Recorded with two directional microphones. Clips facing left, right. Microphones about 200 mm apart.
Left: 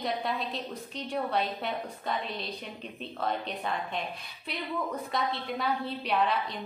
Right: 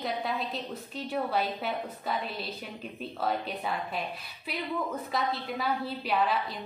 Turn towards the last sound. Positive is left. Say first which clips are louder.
# even
turn(degrees=0)  # may be behind; listen again after turning